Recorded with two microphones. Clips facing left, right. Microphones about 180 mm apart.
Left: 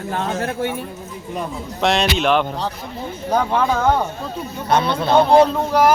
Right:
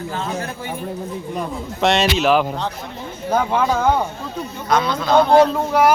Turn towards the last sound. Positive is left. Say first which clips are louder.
# even
turn(degrees=-5)  # may be behind; listen again after turning